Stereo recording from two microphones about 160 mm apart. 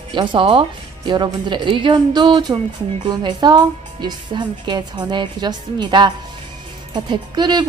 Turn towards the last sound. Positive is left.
turn(degrees=-25)  # may be behind; listen again after turning